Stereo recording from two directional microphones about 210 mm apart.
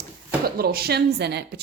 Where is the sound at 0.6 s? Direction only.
45° right (ahead or behind).